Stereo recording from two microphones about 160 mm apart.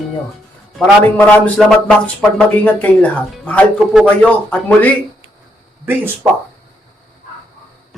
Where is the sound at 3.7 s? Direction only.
5° right (ahead or behind).